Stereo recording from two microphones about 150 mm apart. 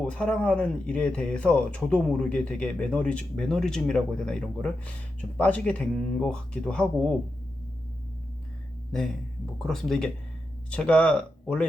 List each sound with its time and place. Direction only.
0.0 s speech: 5° left (ahead or behind)
9.6 s speech: centre (ahead or behind)